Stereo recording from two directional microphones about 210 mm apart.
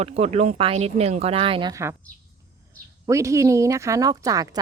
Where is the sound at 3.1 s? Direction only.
15° right (ahead or behind).